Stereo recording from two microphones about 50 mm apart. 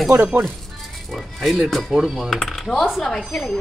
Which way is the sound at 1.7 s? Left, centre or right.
Centre.